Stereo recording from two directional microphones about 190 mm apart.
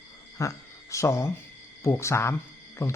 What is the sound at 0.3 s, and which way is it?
A man's voice, 15° left (ahead or behind).